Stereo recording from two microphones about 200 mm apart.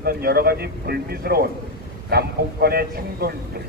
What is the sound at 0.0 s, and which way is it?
A man's voice, 50° right (ahead or behind).